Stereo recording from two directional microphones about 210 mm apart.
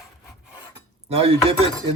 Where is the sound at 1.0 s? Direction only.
25° right (ahead or behind).